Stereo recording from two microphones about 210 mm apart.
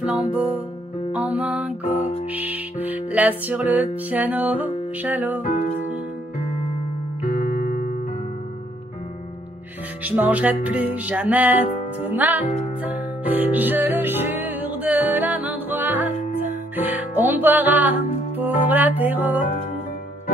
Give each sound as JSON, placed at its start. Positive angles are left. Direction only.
{"t": 0.0, "sound": "music", "side_deg": -5}
{"t": 7.2, "sound": "music", "side_deg": 40}
{"t": 10.0, "sound": "music", "side_deg": -10}